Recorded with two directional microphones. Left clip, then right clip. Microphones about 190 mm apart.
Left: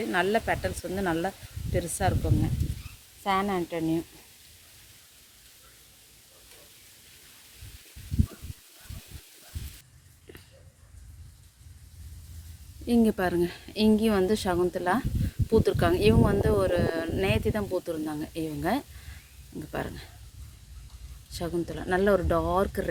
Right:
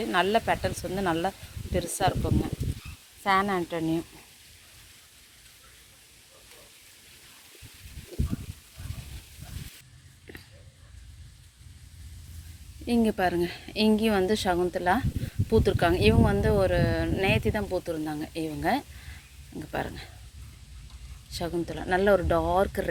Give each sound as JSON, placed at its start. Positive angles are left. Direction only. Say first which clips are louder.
{"t": 0.0, "sound": "speech", "louder": "right 2 dB", "side_deg": 5}
{"t": 3.2, "sound": "speech", "louder": "right 2 dB", "side_deg": -30}
{"t": 12.8, "sound": "speech", "louder": "even", "side_deg": 25}
{"t": 21.2, "sound": "speech", "louder": "right 1 dB", "side_deg": 20}